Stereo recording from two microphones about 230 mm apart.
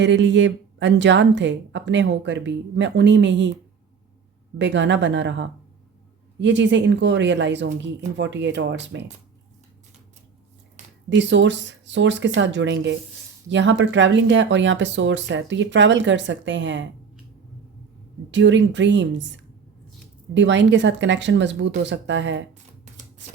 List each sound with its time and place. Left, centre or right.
0.0 s speech: right
4.5 s speech: right
11.2 s speech: right
18.3 s speech: right
20.3 s speech: right